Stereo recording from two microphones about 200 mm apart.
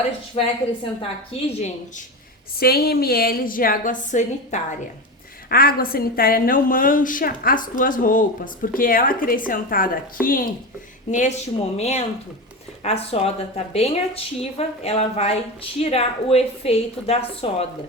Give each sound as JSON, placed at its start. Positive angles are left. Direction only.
{"t": 0.4, "sound": "a woman's voice", "side_deg": 25}
{"t": 2.6, "sound": "a woman's voice", "side_deg": 50}
{"t": 5.5, "sound": "a woman's voice", "side_deg": 45}